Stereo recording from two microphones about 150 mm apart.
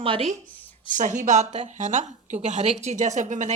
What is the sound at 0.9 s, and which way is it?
A woman's voice, 55° right (ahead or behind).